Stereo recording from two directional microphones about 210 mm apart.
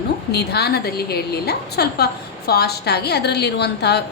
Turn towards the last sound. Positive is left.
turn(degrees=50)  # may be behind; listen again after turning